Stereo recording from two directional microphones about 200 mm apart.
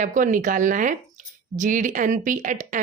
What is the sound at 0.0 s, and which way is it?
A woman's voice, 40° right (ahead or behind).